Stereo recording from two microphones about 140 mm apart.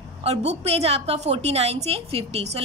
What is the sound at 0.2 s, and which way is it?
A woman's voice, 50° right (ahead or behind).